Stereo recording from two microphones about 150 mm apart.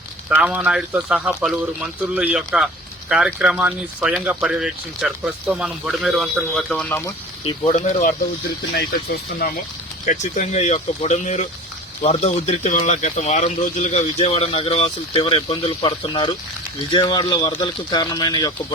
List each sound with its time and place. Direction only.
0.3 s speech: 10° right (ahead or behind); by 7.0 s 5° left (ahead or behind)
7.4 s speech: 45° left (ahead or behind)
10.1 s speech: 50° left (ahead or behind); by 18.5 s 25° left (ahead or behind)